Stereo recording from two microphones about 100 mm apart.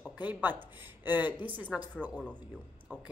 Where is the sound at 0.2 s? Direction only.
15° right (ahead or behind).